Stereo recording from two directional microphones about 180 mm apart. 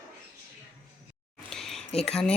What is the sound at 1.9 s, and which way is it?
Speech, 35° left (ahead or behind).